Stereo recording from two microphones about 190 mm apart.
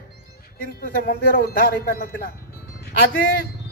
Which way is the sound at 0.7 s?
55° left (ahead or behind).